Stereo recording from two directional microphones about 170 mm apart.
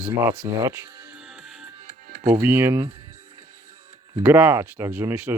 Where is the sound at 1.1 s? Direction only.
5° right (ahead or behind).